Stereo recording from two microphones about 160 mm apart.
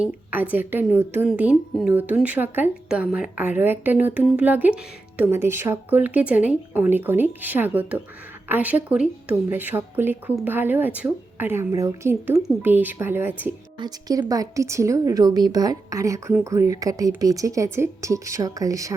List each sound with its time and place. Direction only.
0.0 s speech: 10° right (ahead or behind)
13.7 s speech: 25° right (ahead or behind)